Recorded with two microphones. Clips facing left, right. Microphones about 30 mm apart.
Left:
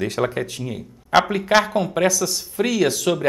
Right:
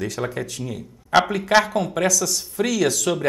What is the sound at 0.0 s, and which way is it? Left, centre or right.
Speech, left.